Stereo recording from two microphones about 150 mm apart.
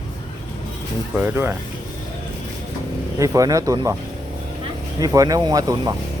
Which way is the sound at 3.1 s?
20° right (ahead or behind).